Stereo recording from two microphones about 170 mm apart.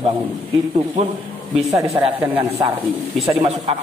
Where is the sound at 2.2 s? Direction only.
15° right (ahead or behind).